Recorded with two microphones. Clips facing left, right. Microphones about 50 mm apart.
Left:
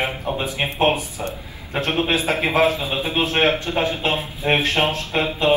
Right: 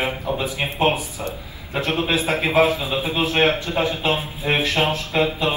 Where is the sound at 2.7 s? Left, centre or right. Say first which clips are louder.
Right 1 dB; left.